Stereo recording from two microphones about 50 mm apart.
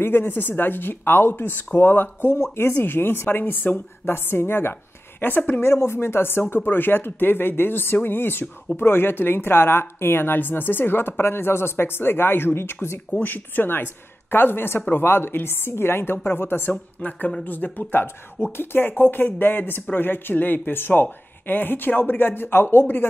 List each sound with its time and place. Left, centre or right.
0.0 s speech: left
5.6 s speech: left
17.0 s speech: left
17.9 s speech: left